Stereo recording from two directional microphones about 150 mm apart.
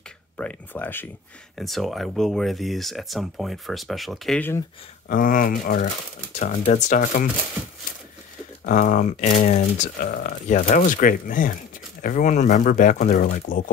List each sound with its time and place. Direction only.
0.4 s speech: 10° left (ahead or behind)
1.6 s speech: centre (ahead or behind)
4.4 s speech: 15° left (ahead or behind)
5.0 s speech: 65° left (ahead or behind)
8.6 s speech: 60° left (ahead or behind)